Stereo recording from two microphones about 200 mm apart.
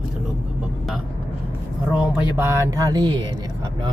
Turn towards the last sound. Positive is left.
turn(degrees=-20)  # may be behind; listen again after turning